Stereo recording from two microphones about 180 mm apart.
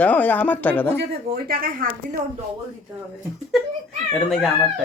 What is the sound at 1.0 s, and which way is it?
Speech, 60° right (ahead or behind).